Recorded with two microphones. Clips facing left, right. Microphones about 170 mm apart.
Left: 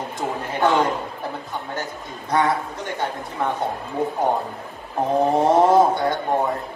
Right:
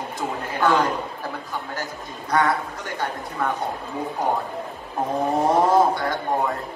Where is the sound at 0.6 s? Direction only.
25° left (ahead or behind).